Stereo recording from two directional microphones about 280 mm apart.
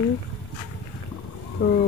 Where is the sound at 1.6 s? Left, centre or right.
Left.